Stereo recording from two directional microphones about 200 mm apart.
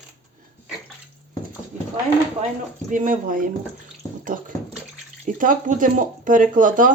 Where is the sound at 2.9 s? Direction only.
40° right (ahead or behind).